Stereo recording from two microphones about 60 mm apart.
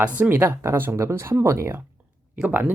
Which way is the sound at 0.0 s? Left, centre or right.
Right.